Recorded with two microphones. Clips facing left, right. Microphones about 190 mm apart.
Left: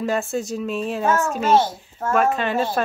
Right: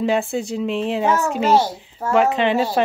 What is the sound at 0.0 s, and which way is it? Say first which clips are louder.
Speech: right 3 dB; 15° right (ahead or behind).